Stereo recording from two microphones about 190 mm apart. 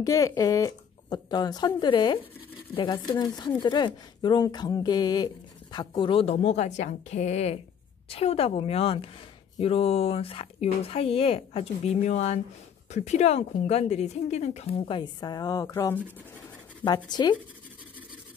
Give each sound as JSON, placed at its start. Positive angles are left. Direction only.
{"t": 0.0, "sound": "a woman's voice", "side_deg": 20}